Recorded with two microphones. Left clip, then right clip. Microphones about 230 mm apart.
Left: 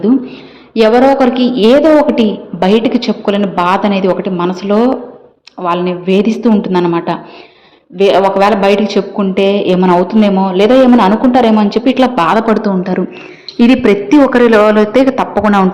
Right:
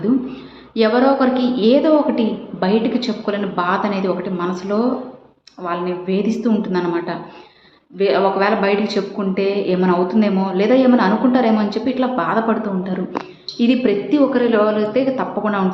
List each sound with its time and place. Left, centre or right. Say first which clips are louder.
0.7 s a woman's voice: left 7 dB; left
13.6 s a woman's voice: left 8 dB; left